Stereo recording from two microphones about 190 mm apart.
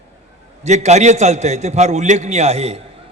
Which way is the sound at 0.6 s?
35° right (ahead or behind).